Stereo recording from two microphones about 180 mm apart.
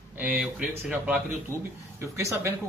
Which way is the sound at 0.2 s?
10° right (ahead or behind).